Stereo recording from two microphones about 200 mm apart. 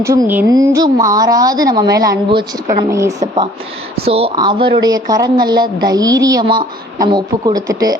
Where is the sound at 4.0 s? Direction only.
30° right (ahead or behind).